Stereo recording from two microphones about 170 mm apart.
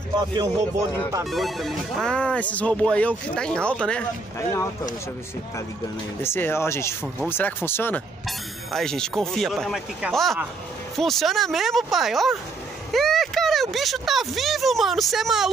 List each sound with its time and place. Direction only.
1.3 s speech: centre (ahead or behind)
4.4 s speech: 15° left (ahead or behind)
6.2 s speech: 15° left (ahead or behind); by 15.5 s centre (ahead or behind)